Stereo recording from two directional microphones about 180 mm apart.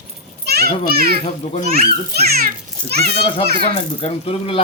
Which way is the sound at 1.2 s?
35° left (ahead or behind).